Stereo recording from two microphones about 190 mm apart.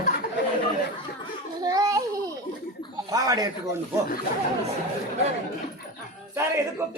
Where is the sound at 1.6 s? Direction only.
20° right (ahead or behind).